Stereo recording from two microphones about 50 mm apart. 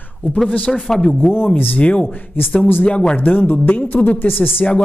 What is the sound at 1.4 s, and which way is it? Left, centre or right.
Speech, left.